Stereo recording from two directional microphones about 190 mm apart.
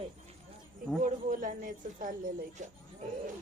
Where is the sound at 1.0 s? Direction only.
45° right (ahead or behind).